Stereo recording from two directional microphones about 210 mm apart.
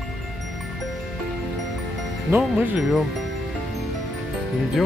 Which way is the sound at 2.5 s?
5° right (ahead or behind).